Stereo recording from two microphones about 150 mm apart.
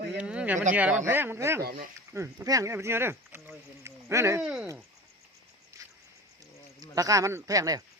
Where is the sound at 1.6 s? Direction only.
90° right.